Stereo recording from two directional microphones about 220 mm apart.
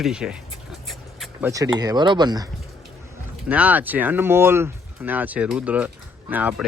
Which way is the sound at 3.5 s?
5° right (ahead or behind).